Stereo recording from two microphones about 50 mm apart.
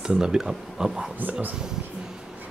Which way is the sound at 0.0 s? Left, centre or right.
Centre.